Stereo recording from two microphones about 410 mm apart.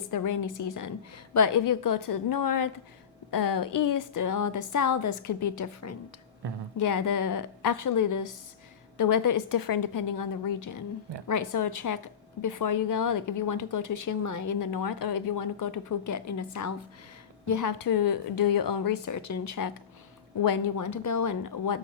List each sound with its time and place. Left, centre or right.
0.1 s a woman's voice: left
6.4 s speech: right
6.7 s a woman's voice: left